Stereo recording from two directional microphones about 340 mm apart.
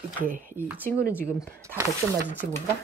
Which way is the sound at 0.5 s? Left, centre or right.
Centre.